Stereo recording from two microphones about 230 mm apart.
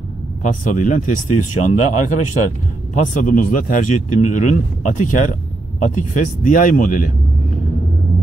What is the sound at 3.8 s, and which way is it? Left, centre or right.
Speech, left.